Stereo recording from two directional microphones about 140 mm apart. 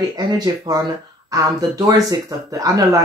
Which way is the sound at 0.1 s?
30° right (ahead or behind).